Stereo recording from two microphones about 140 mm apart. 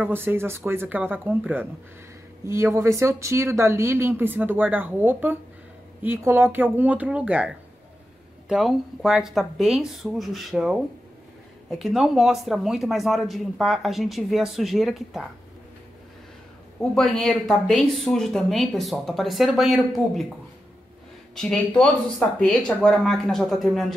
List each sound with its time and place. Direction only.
0.0 s speech: 15° right (ahead or behind)
16.9 s speech: 5° left (ahead or behind)
21.4 s speech: 5° left (ahead or behind)